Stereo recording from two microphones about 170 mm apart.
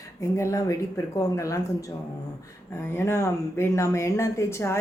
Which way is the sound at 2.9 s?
15° left (ahead or behind).